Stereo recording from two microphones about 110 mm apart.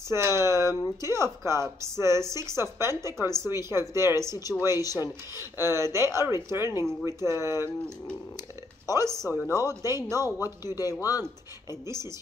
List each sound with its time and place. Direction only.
0.1 s a woman's voice: 25° right (ahead or behind)
8.9 s a woman's voice: 25° right (ahead or behind)
10.4 s speech: 35° left (ahead or behind)
11.8 s a woman's voice: 25° right (ahead or behind)